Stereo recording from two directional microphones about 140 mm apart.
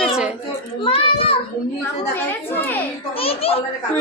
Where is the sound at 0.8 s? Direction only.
40° left (ahead or behind).